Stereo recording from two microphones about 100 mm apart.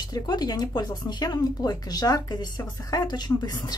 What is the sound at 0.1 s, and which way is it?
Speech, 40° left (ahead or behind).